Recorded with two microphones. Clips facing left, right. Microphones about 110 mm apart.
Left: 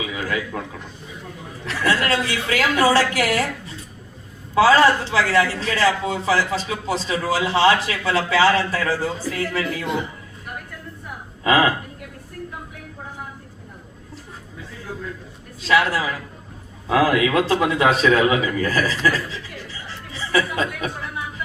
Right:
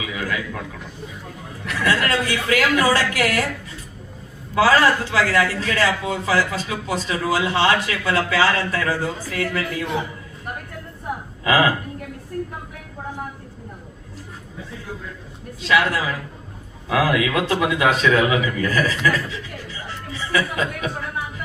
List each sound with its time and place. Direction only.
0.0 s a sound: 25° left (ahead or behind)
1.6 s a man's voice: 30° left (ahead or behind)
11.4 s a man's voice: 30° left (ahead or behind)
15.6 s a man's voice: 30° left (ahead or behind)